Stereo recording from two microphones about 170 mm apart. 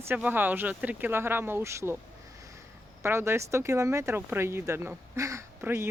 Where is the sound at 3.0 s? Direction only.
15° right (ahead or behind).